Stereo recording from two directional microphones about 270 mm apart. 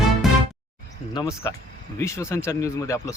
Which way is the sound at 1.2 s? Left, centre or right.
Centre.